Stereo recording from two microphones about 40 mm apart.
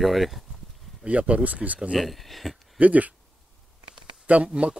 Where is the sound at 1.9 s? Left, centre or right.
Centre.